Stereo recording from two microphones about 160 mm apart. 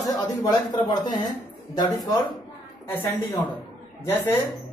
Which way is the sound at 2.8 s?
15° left (ahead or behind).